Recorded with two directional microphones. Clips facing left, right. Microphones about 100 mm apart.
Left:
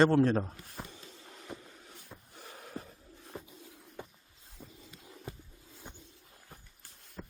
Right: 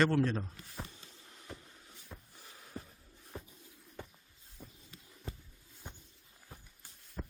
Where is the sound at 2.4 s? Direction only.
70° left (ahead or behind).